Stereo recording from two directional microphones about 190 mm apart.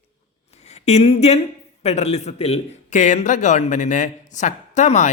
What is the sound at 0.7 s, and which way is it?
Speech, 35° left (ahead or behind).